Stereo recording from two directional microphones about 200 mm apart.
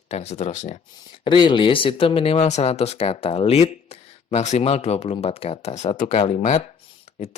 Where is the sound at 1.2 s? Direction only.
25° left (ahead or behind).